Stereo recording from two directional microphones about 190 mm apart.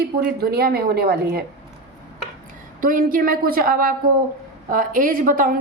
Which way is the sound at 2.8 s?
45° right (ahead or behind).